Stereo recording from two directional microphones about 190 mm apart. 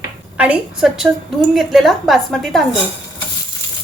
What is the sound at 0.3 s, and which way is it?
Speech, 5° right (ahead or behind).